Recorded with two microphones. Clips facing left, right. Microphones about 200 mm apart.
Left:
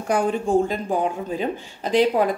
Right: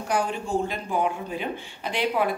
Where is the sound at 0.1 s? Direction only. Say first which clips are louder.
Left 6 dB; 50° left (ahead or behind).